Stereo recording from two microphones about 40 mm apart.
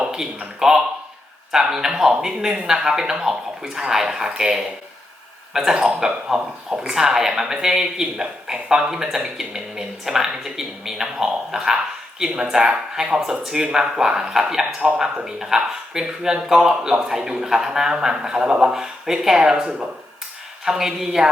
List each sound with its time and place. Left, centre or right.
0.0 s speech: centre
20.7 s speech: centre